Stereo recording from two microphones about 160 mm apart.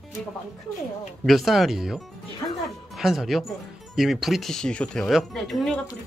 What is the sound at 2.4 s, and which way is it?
Music, 20° left (ahead or behind).